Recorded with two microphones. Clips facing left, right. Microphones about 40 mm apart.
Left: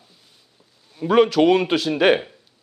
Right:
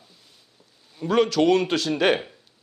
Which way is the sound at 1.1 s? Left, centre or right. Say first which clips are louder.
Left 4 dB; centre.